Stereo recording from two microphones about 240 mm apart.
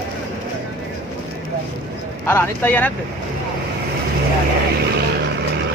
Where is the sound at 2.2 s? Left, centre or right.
Centre.